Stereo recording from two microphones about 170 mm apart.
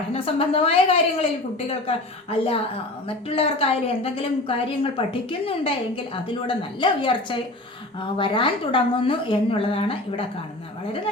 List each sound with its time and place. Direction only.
0.1 s a woman's voice: 35° left (ahead or behind)
6.2 s a woman's voice: 30° left (ahead or behind)